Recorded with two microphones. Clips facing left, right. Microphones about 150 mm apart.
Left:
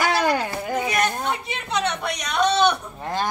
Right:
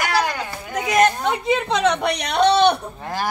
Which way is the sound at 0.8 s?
90° right.